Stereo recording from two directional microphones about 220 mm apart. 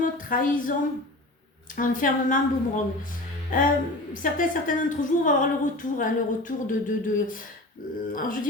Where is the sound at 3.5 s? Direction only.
40° left (ahead or behind).